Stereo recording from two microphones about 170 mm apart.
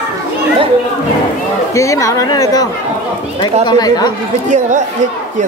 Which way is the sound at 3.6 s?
25° left (ahead or behind).